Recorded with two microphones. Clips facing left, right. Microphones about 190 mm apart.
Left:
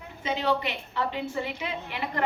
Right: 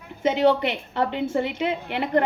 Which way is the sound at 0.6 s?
55° right (ahead or behind).